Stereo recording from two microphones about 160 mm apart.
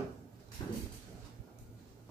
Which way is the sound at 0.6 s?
25° left (ahead or behind).